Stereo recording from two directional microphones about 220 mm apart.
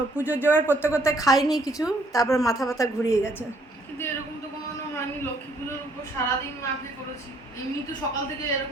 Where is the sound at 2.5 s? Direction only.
Centre (ahead or behind).